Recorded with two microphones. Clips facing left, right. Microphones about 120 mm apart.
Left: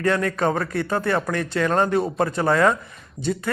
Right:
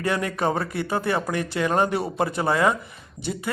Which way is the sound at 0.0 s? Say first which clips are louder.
Left 3 dB; 15° right (ahead or behind).